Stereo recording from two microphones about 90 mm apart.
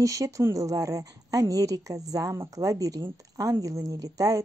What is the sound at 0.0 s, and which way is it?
A woman's voice, 35° right (ahead or behind).